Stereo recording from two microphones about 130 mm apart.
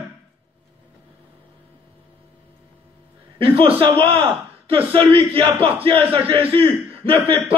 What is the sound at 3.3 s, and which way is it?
A man's voice, 45° right (ahead or behind).